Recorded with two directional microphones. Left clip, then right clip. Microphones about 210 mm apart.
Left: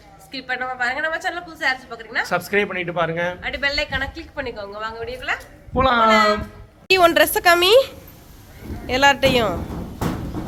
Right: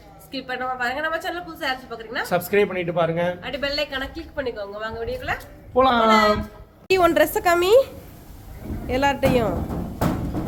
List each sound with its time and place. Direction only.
0.3 s a woman's voice: 20° right (ahead or behind)
2.2 s a woman's voice: 5° left (ahead or behind)
3.4 s a woman's voice: 20° right (ahead or behind)
5.7 s a woman's voice: 5° left (ahead or behind)
6.1 s a woman's voice: 25° right (ahead or behind)
6.8 s a woman's voice: 5° right (ahead or behind)